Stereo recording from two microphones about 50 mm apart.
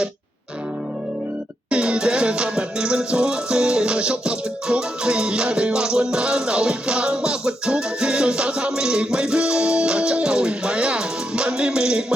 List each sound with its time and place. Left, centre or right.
1.7 s music: centre